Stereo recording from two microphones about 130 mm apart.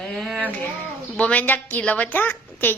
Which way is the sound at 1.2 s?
10° left (ahead or behind).